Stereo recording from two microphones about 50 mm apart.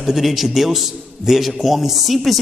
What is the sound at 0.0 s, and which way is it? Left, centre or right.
A man's voice, centre.